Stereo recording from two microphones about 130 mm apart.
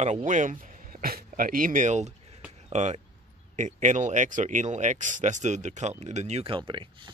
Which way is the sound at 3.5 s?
70° right (ahead or behind).